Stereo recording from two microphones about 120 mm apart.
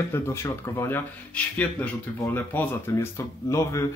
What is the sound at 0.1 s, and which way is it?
Speech, 25° left (ahead or behind).